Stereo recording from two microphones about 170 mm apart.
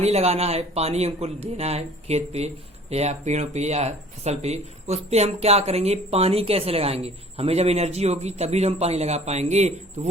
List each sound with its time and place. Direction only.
0.0 s speech: 40° right (ahead or behind)